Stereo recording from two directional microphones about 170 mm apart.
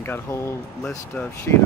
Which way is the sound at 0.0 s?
15° left (ahead or behind).